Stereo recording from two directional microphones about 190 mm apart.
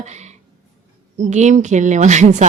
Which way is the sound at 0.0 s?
35° right (ahead or behind).